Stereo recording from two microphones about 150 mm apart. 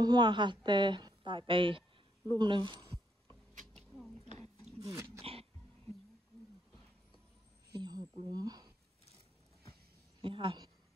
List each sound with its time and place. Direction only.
0.0 s a woman's voice: 30° right (ahead or behind)
3.3 s a sound: 5° left (ahead or behind)
4.7 s dog: 20° right (ahead or behind)
5.2 s throat clearing: 40° right (ahead or behind)
7.7 s a sound: 25° right (ahead or behind)
8.2 s speech: 25° right (ahead or behind)
10.2 s a woman's voice: 35° right (ahead or behind)